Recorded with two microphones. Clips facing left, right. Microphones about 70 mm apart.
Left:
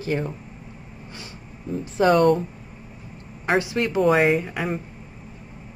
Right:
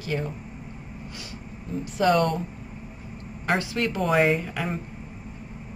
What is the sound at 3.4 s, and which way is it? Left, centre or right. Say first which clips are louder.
Speech: left 3 dB; centre.